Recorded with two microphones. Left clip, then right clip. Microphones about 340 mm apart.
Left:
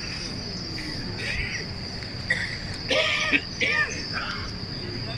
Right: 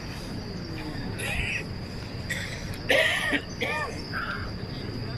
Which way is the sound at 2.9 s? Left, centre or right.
Right.